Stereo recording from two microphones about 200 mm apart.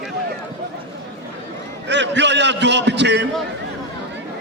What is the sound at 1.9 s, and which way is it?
A man's voice, 60° right (ahead or behind).